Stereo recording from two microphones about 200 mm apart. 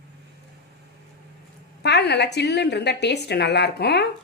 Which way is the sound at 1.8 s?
55° left (ahead or behind).